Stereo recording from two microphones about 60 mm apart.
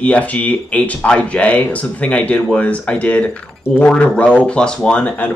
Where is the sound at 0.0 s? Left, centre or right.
Left.